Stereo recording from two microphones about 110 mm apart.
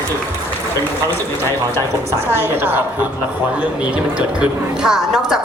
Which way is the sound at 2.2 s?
20° right (ahead or behind).